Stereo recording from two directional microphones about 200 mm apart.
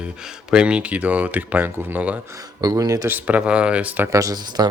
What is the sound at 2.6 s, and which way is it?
Speech, 20° right (ahead or behind).